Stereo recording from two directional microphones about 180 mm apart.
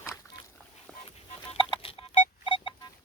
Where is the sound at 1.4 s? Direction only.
30° left (ahead or behind).